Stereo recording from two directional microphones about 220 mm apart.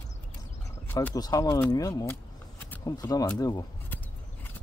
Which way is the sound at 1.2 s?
20° left (ahead or behind).